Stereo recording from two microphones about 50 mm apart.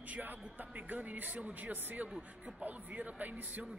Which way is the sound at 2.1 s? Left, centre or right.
Centre.